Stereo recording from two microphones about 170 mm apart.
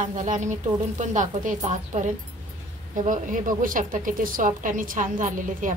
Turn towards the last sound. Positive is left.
turn(degrees=-50)  # may be behind; listen again after turning